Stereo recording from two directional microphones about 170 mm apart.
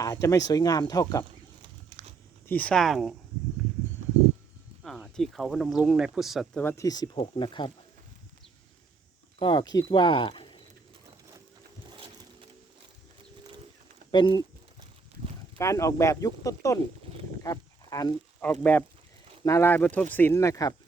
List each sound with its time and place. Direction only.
0.0 s speech: 20° left (ahead or behind)
1.9 s walk: 45° right (ahead or behind)
2.5 s speech: 10° left (ahead or behind)
4.8 s speech: centre (ahead or behind)
6.6 s speech: 15° left (ahead or behind)
9.4 s speech: 25° left (ahead or behind)
11.9 s a sound: 30° right (ahead or behind)
14.1 s speech: 25° left (ahead or behind)
15.5 s speech: 15° left (ahead or behind)
17.4 s a sound: 20° left (ahead or behind)
18.6 s speech: 10° left (ahead or behind)